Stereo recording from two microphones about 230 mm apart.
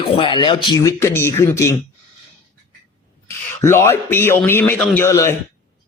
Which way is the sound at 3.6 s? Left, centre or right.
Centre.